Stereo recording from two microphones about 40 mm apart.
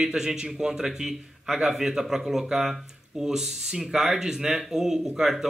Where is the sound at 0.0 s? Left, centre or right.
Centre.